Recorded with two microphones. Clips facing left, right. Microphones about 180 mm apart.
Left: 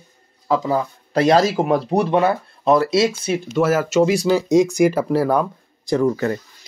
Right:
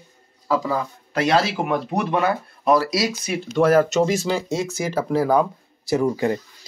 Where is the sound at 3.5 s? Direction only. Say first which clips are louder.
Right 2 dB; 5° left (ahead or behind).